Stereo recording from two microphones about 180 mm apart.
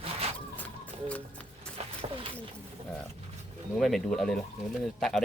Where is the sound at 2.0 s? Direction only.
30° right (ahead or behind).